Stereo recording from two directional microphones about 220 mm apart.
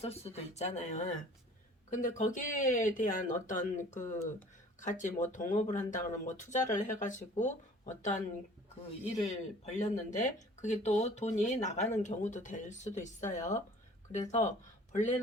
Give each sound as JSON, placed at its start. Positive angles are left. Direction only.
{"t": 0.0, "sound": "speech", "side_deg": 30}
{"t": 9.2, "sound": "speech", "side_deg": 30}